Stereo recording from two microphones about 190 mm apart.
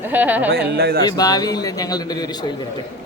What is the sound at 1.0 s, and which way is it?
Speech, 20° left (ahead or behind).